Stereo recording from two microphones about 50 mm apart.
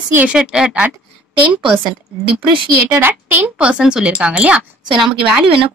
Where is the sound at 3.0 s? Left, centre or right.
Right.